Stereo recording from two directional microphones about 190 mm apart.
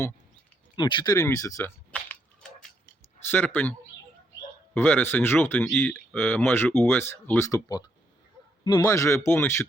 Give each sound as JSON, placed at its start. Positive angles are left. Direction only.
{"t": 0.8, "sound": "speech", "side_deg": 25}
{"t": 3.2, "sound": "speech", "side_deg": 10}